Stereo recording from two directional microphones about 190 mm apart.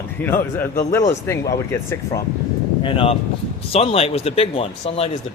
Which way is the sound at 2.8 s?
30° left (ahead or behind).